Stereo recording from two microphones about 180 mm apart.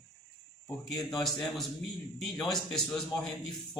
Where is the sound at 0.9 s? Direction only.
Centre (ahead or behind).